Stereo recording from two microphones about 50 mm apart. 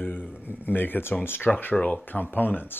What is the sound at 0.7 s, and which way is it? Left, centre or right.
Speech, left.